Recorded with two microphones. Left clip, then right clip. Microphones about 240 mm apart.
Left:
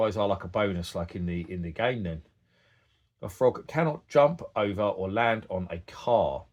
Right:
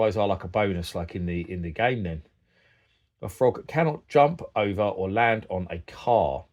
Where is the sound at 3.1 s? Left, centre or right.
Right.